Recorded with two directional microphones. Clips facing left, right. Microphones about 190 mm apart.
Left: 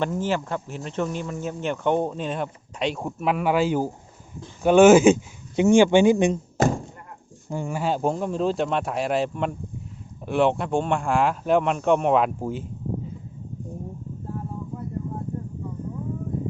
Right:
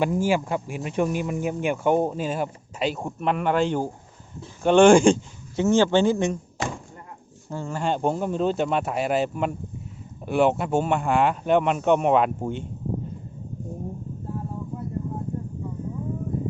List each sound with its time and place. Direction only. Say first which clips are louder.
0.0 s speech: right 3 dB; 10° right (ahead or behind); by 6.4 s 15° left (ahead or behind)
6.6 s a sound: left 9 dB; 45° left (ahead or behind)
7.5 s speech: left 1 dB; 15° left (ahead or behind)